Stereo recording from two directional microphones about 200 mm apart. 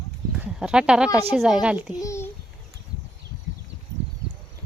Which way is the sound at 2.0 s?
15° left (ahead or behind).